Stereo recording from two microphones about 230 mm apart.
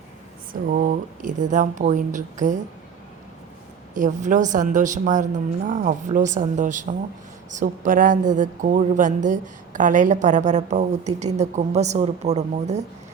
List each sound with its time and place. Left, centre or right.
0.7 s a woman's voice: right
3.9 s a woman's voice: right